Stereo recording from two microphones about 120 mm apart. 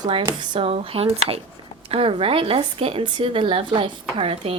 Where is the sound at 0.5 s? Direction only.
55° right (ahead or behind).